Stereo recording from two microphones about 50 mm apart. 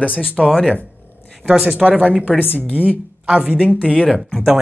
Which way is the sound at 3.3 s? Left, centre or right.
Centre.